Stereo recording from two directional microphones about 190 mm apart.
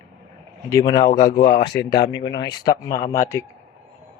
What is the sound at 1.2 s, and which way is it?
Speech, 45° left (ahead or behind).